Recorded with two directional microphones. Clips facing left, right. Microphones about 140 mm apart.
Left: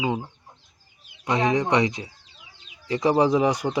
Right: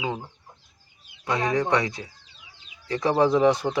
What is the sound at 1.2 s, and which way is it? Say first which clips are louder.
Speech: left 2 dB; 20° left (ahead or behind).